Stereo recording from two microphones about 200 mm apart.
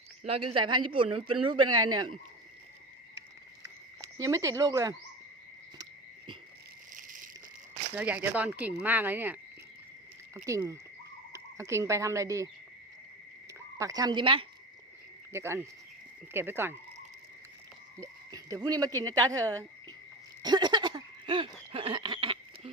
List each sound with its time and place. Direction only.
0.3 s a man's voice: 25° right (ahead or behind)
1.6 s speech: 90° right
4.2 s speech: 15° right (ahead or behind)
5.7 s cricket: 15° right (ahead or behind)
6.9 s a sound: 40° right (ahead or behind)
7.9 s speech: 5° right (ahead or behind)
13.7 s a man's voice: 15° right (ahead or behind)
15.3 s speech: 15° right (ahead or behind)
18.0 s speech: 15° right (ahead or behind)
20.4 s a sound: 20° right (ahead or behind)